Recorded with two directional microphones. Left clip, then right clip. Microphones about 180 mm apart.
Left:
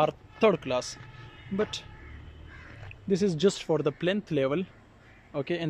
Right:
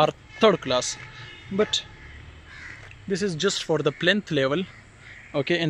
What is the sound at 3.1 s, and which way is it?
Speech, 20° left (ahead or behind).